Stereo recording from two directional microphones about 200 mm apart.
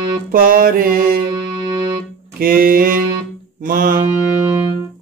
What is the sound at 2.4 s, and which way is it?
Speech, 45° right (ahead or behind).